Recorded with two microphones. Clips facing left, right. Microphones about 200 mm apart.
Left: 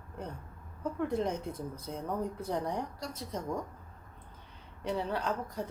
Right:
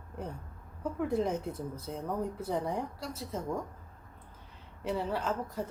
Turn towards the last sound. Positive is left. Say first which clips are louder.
# right 1 dB
turn(degrees=-5)  # may be behind; listen again after turning